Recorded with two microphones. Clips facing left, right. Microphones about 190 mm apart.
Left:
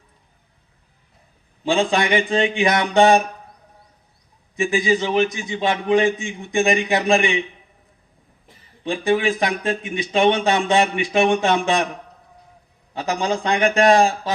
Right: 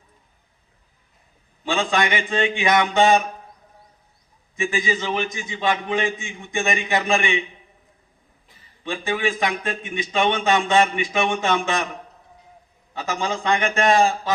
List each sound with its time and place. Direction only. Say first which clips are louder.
1.7 s a man's voice: left 4 dB; 35° left (ahead or behind)
4.5 s a man's voice: left 5 dB; 35° left (ahead or behind)
8.8 s a man's voice: left 5 dB; 35° left (ahead or behind)
12.9 s a man's voice: left 4 dB; 35° left (ahead or behind)